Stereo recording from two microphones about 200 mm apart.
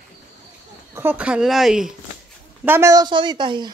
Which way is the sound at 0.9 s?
10° right (ahead or behind).